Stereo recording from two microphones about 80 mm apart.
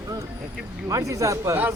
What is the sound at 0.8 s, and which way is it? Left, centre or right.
Speech, right.